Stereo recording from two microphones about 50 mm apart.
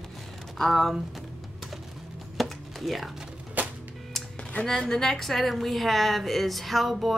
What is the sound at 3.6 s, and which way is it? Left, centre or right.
Music, right.